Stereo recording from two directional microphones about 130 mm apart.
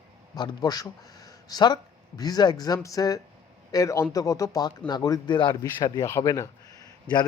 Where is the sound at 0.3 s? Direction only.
30° left (ahead or behind).